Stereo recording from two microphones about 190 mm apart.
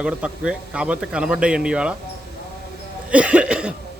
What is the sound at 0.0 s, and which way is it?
A man's voice, 5° right (ahead or behind).